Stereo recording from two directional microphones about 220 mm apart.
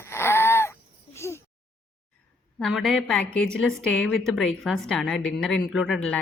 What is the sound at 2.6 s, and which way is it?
A woman's voice, centre (ahead or behind).